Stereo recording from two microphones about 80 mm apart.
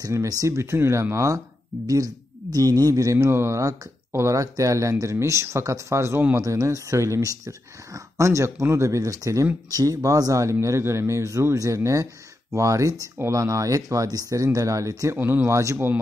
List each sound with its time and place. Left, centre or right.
0.0 s speech: right
2.5 s speech: right
15.1 s speech: right